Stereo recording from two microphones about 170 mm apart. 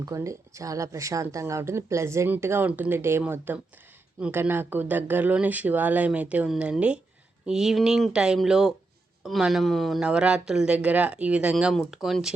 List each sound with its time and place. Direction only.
0.0 s speech: 20° right (ahead or behind); by 12.3 s centre (ahead or behind)